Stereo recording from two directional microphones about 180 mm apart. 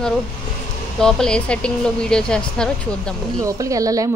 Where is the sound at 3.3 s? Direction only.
20° right (ahead or behind).